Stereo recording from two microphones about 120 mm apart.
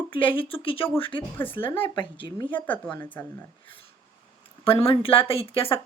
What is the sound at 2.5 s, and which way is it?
Speech, 15° left (ahead or behind).